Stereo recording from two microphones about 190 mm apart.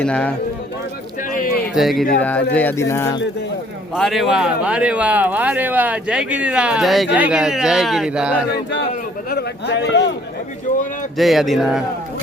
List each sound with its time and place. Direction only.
0.0 s speech: 5° left (ahead or behind)
1.3 s a sound: 45° left (ahead or behind)
1.7 s speech: centre (ahead or behind)
2.6 s speech: 10° left (ahead or behind)
3.9 s speech: centre (ahead or behind)
9.3 s a man's voice: 65° left (ahead or behind)
11.2 s speech: centre (ahead or behind)